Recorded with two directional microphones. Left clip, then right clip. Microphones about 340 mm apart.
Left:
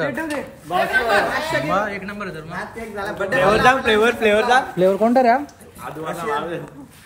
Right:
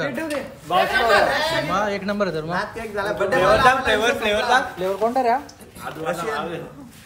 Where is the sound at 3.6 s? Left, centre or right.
Left.